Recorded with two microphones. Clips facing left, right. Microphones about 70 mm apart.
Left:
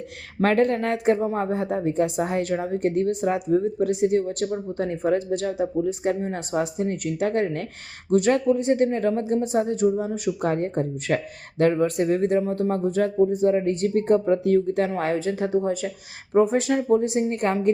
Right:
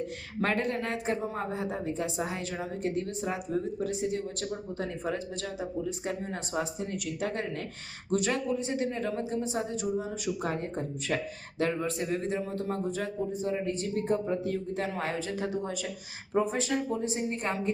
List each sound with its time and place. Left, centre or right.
0.4 s a woman's voice: left
1.2 s speech: left
1.9 s a woman's voice: left
14.8 s speech: left